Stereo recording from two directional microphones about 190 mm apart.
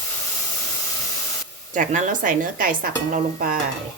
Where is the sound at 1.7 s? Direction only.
40° right (ahead or behind).